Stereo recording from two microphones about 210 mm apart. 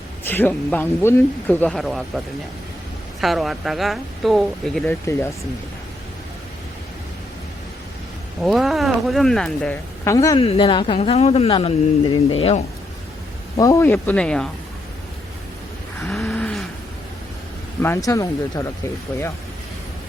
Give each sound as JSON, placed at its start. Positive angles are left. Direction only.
{"t": 0.3, "sound": "speech", "side_deg": 10}
{"t": 8.4, "sound": "speech", "side_deg": 0}
{"t": 10.4, "sound": "speech", "side_deg": 25}
{"t": 13.6, "sound": "speech", "side_deg": 15}
{"t": 16.0, "sound": "a sound", "side_deg": 5}
{"t": 17.8, "sound": "speech", "side_deg": 15}